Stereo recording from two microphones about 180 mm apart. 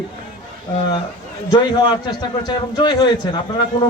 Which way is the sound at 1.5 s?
25° left (ahead or behind).